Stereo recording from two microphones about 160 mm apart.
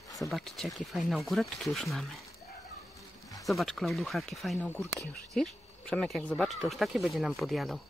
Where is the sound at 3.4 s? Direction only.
Centre (ahead or behind).